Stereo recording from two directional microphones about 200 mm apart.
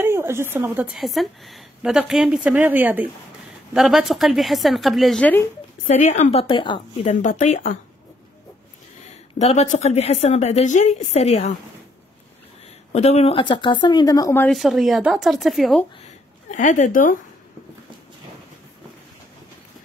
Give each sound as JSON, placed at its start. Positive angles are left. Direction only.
{"t": 0.0, "sound": "a woman's voice", "side_deg": -10}
{"t": 5.9, "sound": "a woman's voice", "side_deg": 40}
{"t": 7.1, "sound": "a woman's voice", "side_deg": 35}
{"t": 9.4, "sound": "a woman's voice", "side_deg": 35}
{"t": 12.9, "sound": "speech", "side_deg": 35}
{"t": 14.6, "sound": "a woman's voice", "side_deg": 0}
{"t": 16.4, "sound": "a woman's voice", "side_deg": 40}